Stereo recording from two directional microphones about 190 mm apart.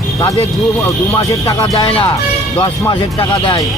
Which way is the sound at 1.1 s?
15° left (ahead or behind).